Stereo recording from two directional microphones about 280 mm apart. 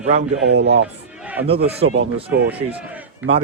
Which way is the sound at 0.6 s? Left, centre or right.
Right.